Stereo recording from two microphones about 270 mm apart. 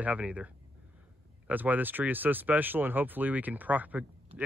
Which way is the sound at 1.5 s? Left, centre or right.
Centre.